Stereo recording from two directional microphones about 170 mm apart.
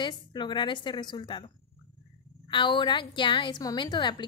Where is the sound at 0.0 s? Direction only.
25° left (ahead or behind).